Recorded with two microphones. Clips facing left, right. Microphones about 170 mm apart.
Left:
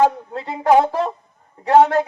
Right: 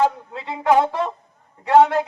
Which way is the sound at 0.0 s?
40° left (ahead or behind).